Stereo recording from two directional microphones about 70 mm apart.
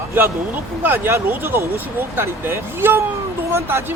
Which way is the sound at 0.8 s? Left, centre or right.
Right.